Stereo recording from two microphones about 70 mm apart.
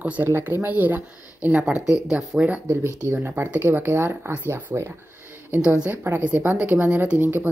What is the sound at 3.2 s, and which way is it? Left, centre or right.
Speech, right.